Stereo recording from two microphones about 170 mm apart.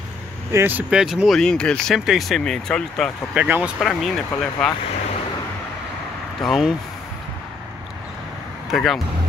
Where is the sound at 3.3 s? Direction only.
10° right (ahead or behind).